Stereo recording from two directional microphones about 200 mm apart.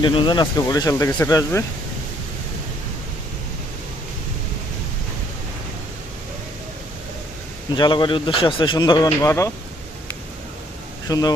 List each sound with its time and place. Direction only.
0.0 s speech: 25° left (ahead or behind)
7.8 s speech: 25° left (ahead or behind)
11.1 s speech: 20° left (ahead or behind)